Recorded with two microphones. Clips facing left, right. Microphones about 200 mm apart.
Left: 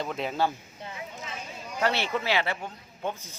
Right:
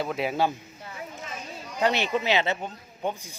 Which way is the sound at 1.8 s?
15° right (ahead or behind).